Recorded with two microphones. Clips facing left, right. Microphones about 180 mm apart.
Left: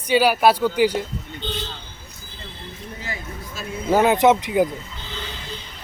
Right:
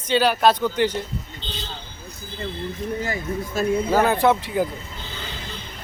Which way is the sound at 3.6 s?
50° right (ahead or behind).